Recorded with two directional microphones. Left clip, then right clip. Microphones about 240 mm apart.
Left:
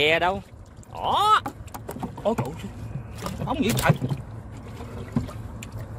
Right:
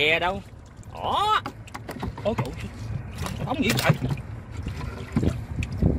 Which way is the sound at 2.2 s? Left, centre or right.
Centre.